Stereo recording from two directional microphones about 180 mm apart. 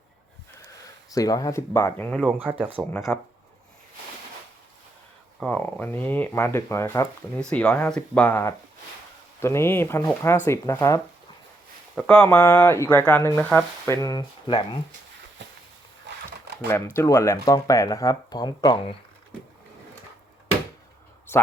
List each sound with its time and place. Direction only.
1.1 s speech: 20° left (ahead or behind)
2.2 s speech: 10° right (ahead or behind)
3.1 s speech: 5° left (ahead or behind)
5.4 s speech: 5° left (ahead or behind)
7.3 s speech: 5° left (ahead or behind); by 14.8 s 30° left (ahead or behind)
16.6 s speech: 10° left (ahead or behind)